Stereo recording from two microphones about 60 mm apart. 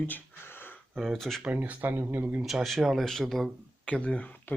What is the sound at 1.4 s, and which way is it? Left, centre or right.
Speech, right.